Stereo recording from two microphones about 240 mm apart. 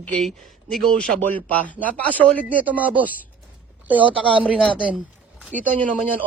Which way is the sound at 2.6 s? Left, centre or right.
Centre.